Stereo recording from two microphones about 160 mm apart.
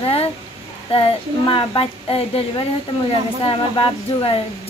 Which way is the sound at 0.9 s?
35° left (ahead or behind).